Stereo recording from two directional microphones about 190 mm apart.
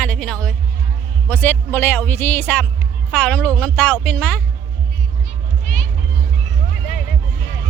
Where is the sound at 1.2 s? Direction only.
10° left (ahead or behind).